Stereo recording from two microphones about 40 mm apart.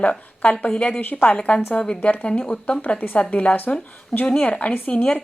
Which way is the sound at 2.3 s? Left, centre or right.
Left.